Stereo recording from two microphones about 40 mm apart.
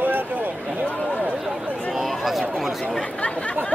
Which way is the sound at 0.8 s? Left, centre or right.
Left.